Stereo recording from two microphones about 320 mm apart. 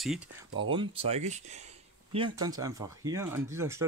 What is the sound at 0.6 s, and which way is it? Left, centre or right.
Speech, centre.